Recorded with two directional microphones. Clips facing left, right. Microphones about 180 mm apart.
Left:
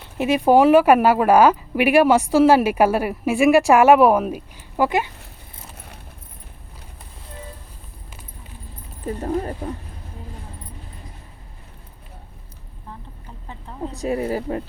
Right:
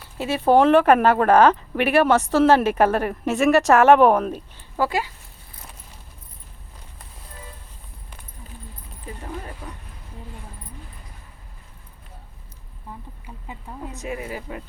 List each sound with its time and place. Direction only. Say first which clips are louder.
0.2 s speech: left 2 dB; 15° left (ahead or behind)
4.9 s speech: left 4 dB; 20° left (ahead or behind)
9.0 s speech: left 10 dB; 40° left (ahead or behind)
13.8 s speech: left 8 dB; 35° left (ahead or behind)